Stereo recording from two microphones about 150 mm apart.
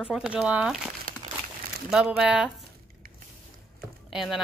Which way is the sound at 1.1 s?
70° right (ahead or behind).